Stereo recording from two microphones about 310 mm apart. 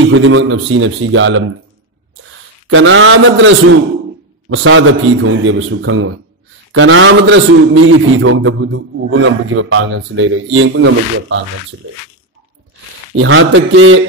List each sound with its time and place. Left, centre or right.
0.1 s a man's voice: right
2.7 s a man's voice: right
13.1 s a man's voice: right